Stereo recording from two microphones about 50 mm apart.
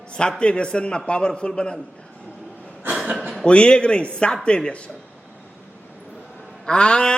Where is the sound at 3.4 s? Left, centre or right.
Centre.